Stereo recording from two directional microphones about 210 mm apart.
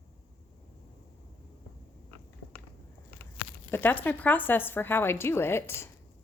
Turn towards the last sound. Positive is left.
turn(degrees=10)  # may be behind; listen again after turning